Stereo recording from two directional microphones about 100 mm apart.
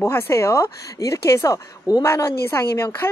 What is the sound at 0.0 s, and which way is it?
A woman's voice, 25° left (ahead or behind).